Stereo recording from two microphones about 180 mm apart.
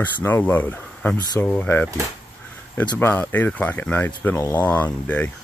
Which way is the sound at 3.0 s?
10° left (ahead or behind).